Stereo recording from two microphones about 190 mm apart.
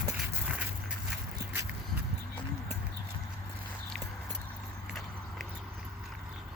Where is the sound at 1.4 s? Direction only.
15° right (ahead or behind).